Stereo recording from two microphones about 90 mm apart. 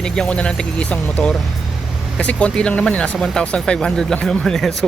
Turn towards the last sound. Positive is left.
turn(degrees=5)  # may be behind; listen again after turning